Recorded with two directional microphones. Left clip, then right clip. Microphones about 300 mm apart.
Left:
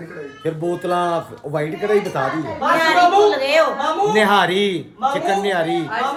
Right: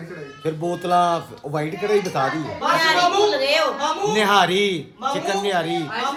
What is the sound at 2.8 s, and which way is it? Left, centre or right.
Speech, left.